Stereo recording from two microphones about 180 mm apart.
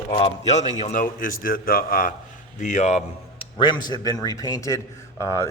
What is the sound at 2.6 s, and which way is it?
Speech, 40° left (ahead or behind).